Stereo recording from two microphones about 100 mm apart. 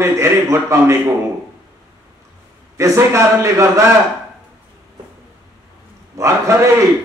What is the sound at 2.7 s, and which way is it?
A man's voice, 30° right (ahead or behind).